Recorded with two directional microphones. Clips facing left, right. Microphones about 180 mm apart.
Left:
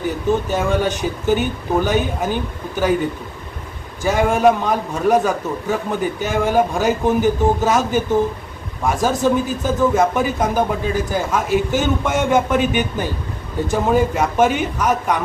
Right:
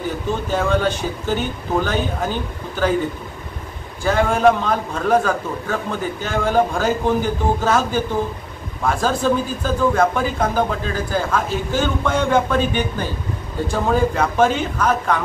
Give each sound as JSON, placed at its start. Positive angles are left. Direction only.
{"t": 0.5, "sound": "a man's voice", "side_deg": 15}
{"t": 4.0, "sound": "a man's voice", "side_deg": 15}